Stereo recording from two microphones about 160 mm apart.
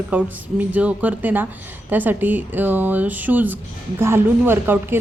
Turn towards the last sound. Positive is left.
turn(degrees=-15)  # may be behind; listen again after turning